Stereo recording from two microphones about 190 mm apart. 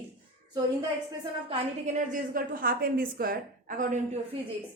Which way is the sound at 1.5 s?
40° right (ahead or behind).